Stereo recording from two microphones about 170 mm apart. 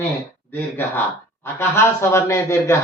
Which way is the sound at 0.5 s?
10° left (ahead or behind).